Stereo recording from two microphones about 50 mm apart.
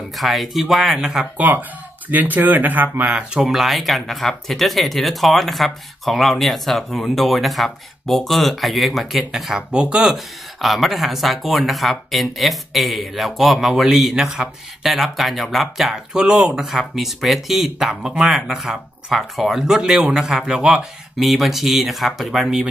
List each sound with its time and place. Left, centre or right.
0.2 s speech: centre
1.5 s speech: right
3.1 s speech: centre
3.4 s speech: centre
9.6 s speech: centre
10.1 s speech: centre
15.9 s speech: centre
21.2 s speech: centre